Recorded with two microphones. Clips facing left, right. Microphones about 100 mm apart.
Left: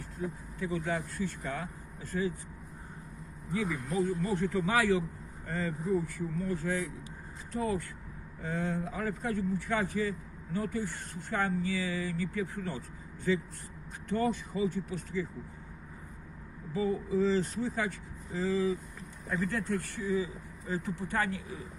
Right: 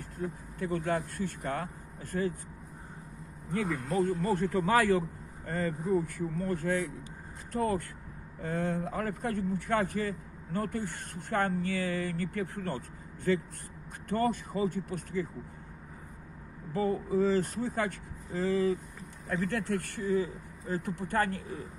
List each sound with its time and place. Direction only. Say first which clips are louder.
0.2 s a man's voice: right 1 dB; 55° right (ahead or behind)
3.5 s speech: right 2 dB; 70° right (ahead or behind)
4.2 s a man's voice: right 2 dB; 50° right (ahead or behind)
16.7 s a man's voice: right 1 dB; 55° right (ahead or behind)